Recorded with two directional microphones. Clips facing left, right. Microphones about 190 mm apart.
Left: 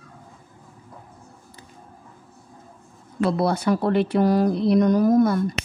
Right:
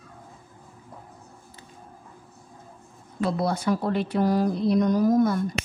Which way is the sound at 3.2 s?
70° left (ahead or behind).